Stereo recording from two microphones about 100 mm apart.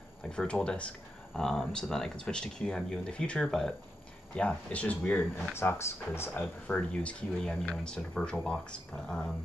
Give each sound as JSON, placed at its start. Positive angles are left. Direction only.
{"t": 0.2, "sound": "speech", "side_deg": 10}
{"t": 6.7, "sound": "speech", "side_deg": 10}